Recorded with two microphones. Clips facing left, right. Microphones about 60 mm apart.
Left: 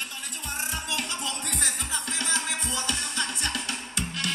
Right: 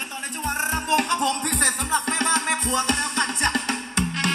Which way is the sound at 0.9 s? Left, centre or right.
Right.